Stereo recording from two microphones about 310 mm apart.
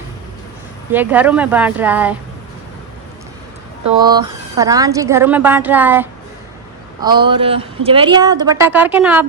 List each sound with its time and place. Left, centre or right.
0.9 s speech: centre
4.0 s speech: centre